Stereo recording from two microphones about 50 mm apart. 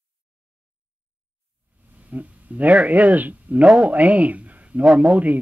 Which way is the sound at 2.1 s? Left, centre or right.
Right.